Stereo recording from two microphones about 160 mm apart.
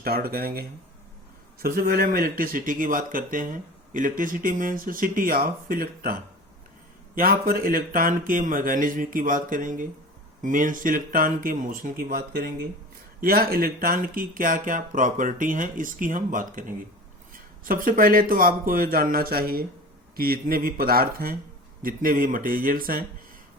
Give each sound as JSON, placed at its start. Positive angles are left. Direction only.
{"t": 0.0, "sound": "speech", "side_deg": -70}
{"t": 7.2, "sound": "speech", "side_deg": -65}